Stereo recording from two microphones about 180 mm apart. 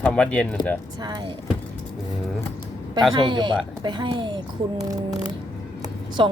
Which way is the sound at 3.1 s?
25° right (ahead or behind).